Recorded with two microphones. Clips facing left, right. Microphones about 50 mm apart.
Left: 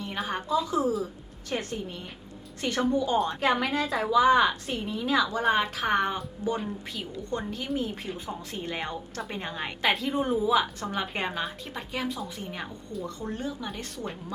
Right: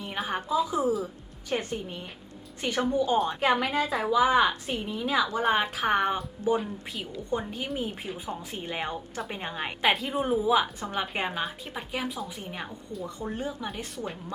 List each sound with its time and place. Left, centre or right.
0.0 s a woman's voice: centre
13.4 s a woman's voice: right
13.7 s a woman's voice: centre